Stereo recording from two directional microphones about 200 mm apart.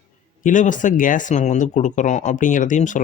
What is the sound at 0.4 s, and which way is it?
Speech, 40° left (ahead or behind).